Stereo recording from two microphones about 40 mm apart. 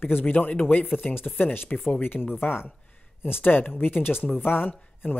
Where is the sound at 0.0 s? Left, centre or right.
Left.